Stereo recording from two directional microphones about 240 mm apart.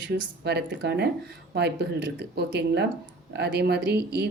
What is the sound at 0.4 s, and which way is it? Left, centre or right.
Speech, right.